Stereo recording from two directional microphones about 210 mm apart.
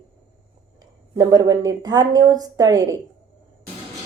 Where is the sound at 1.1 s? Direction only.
15° right (ahead or behind).